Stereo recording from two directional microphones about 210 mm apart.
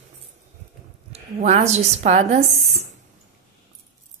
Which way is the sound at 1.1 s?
30° right (ahead or behind).